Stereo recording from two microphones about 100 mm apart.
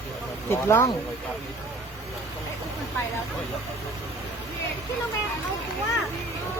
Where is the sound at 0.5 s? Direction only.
25° left (ahead or behind).